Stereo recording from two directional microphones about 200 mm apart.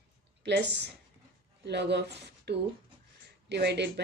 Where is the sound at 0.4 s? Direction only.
60° right (ahead or behind).